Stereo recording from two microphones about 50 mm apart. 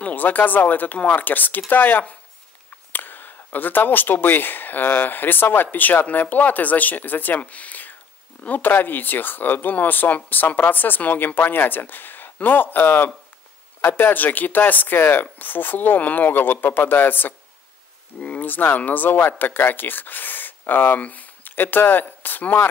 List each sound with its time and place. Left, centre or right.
0.0 s speech: left